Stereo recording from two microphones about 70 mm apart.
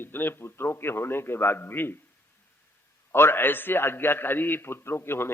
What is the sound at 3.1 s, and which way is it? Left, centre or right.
A man's voice, left.